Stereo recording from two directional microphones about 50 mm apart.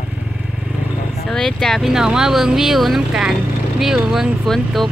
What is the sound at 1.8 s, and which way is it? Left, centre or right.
Speech, centre.